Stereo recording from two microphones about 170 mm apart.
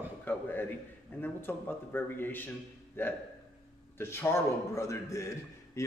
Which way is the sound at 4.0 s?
15° left (ahead or behind).